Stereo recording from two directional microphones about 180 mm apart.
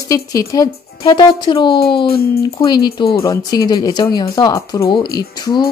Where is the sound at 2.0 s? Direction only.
60° left (ahead or behind).